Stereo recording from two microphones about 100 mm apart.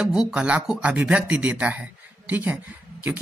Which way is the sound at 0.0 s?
5° right (ahead or behind).